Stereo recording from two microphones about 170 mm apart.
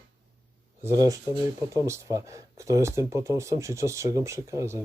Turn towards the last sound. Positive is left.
turn(degrees=-15)  # may be behind; listen again after turning